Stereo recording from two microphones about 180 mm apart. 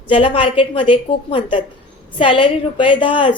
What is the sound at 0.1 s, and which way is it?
A woman's voice, 30° left (ahead or behind).